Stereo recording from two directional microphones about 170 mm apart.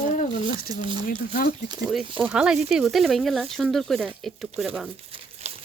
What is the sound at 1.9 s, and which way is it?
Speech, 5° right (ahead or behind).